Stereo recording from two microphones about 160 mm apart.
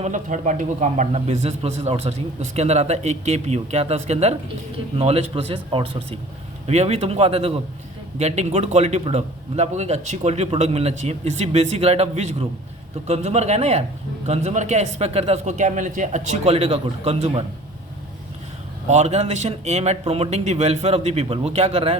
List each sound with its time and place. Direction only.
0.0 s a man's voice: 50° right (ahead or behind)
18.9 s speech: 45° right (ahead or behind)